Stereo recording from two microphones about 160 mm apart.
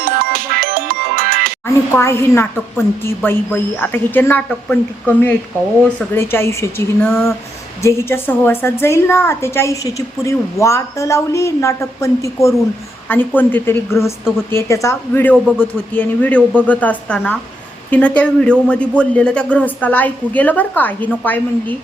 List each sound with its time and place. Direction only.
0.0 s music: 65° right (ahead or behind)
1.6 s a woman's voice: 15° left (ahead or behind)